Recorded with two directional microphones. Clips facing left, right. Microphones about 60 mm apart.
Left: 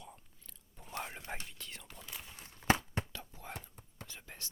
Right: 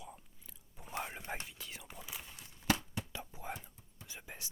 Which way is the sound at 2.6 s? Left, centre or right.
Left.